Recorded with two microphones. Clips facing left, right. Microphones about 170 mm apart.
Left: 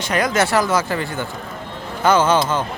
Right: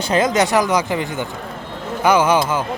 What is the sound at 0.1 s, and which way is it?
Speech, 20° right (ahead or behind).